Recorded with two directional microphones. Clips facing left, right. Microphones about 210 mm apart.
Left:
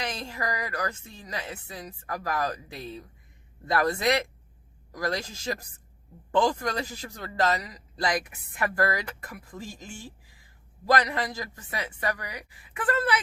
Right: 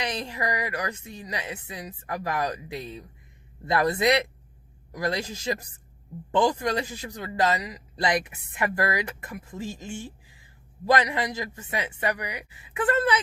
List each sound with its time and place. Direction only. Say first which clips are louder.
0.0 s a woman's voice: right 3 dB; 20° right (ahead or behind)